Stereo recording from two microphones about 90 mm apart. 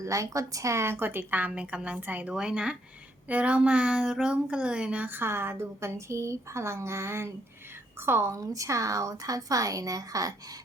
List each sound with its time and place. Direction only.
0.0 s speech: 35° right (ahead or behind); by 2.3 s 20° right (ahead or behind)
2.3 s a woman's voice: 10° right (ahead or behind); by 10.3 s 40° right (ahead or behind)